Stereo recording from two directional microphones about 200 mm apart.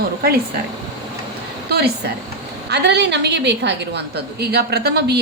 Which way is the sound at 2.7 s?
60° right (ahead or behind).